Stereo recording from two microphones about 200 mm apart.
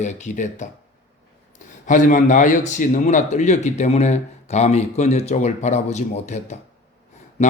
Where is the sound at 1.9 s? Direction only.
40° left (ahead or behind).